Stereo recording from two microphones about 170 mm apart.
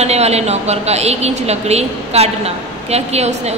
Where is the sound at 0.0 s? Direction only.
40° right (ahead or behind).